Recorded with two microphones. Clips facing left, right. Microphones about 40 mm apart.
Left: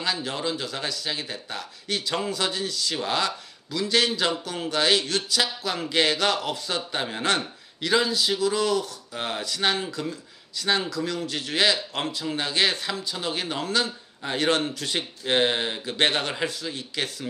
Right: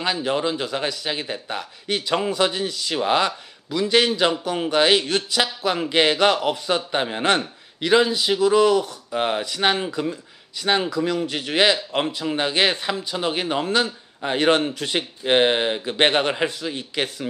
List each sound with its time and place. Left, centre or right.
0.0 s a man's voice: centre